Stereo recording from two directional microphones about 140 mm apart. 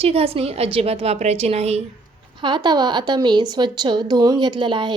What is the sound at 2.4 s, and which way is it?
A woman's voice, 30° right (ahead or behind).